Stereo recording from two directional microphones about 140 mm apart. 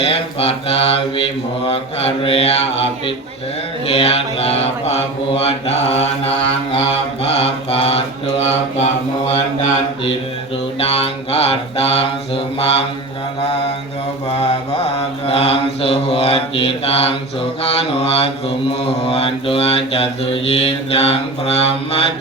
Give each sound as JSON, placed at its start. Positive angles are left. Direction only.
{"t": 0.0, "sound": "mantra", "side_deg": 45}
{"t": 10.8, "sound": "mantra", "side_deg": 45}
{"t": 14.3, "sound": "mantra", "side_deg": 45}